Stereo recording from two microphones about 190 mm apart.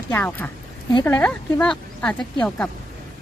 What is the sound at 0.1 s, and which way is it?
A woman's voice, 10° left (ahead or behind).